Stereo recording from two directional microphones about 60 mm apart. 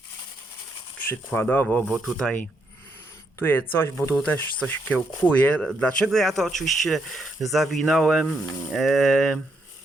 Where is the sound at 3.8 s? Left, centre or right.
Left.